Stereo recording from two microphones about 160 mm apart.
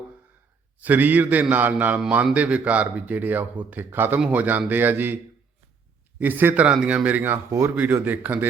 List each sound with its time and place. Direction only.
0.8 s a man's voice: 10° right (ahead or behind)